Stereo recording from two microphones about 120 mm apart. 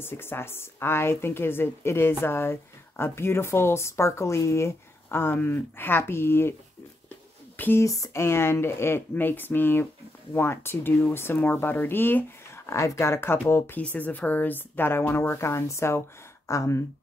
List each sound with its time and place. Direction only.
0.0 s a woman's voice: 20° left (ahead or behind)
7.5 s a woman's voice: 15° left (ahead or behind)